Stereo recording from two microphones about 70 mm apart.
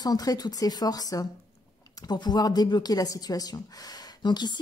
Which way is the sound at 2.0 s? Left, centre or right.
Left.